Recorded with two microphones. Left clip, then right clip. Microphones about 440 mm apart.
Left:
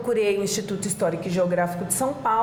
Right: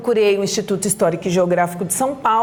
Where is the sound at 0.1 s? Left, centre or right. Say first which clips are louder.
Right 7 dB; right.